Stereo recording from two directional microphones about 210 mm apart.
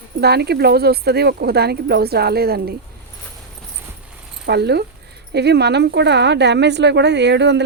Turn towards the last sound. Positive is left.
turn(degrees=-55)  # may be behind; listen again after turning